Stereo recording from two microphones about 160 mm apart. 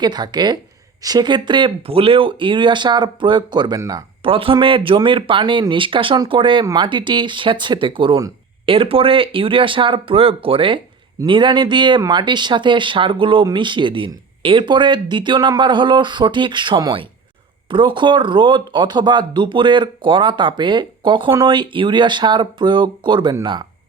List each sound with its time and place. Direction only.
0.0 s speech: 25° right (ahead or behind)
4.3 s speech: 35° right (ahead or behind)